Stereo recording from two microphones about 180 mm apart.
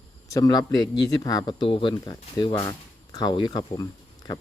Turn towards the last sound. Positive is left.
turn(degrees=20)  # may be behind; listen again after turning